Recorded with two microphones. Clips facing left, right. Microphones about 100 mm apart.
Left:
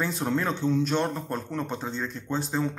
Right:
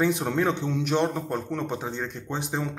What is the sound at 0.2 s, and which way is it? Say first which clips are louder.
A man's voice: right 1 dB; 15° right (ahead or behind).